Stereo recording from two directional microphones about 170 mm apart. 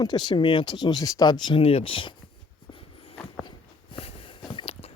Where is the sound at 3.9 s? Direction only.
30° left (ahead or behind).